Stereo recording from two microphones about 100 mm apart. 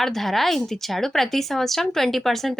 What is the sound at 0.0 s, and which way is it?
Speech, centre (ahead or behind).